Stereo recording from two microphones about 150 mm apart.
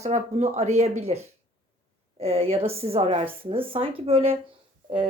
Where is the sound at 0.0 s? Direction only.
50° right (ahead or behind).